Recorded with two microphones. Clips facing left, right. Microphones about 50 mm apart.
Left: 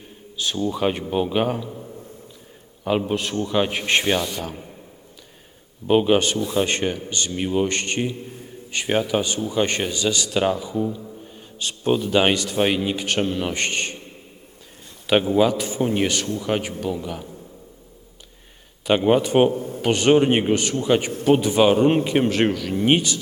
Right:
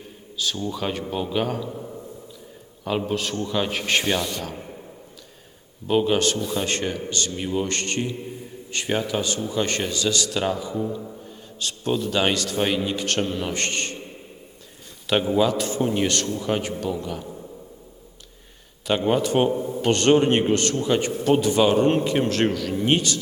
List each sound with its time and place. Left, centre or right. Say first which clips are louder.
0.3 s a man's voice: left 3 dB; left
3.1 s speech: left 2 dB; centre
4.2 s speech: left 1 dB; centre
5.9 s a man's voice: left 3 dB; left
15.4 s speech: left 2 dB; centre
18.9 s speech: left 3 dB; centre
19.5 s a man's voice: even; right
19.8 s speech: left 1 dB; centre